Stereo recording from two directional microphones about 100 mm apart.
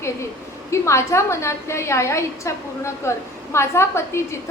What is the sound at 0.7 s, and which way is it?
A woman's voice, 30° left (ahead or behind).